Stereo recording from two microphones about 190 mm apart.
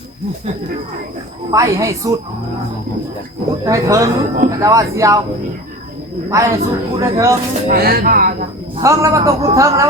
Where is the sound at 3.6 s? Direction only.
15° right (ahead or behind).